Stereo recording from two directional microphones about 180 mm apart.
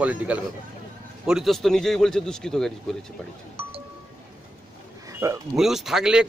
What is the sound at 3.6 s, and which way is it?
Music, 30° right (ahead or behind).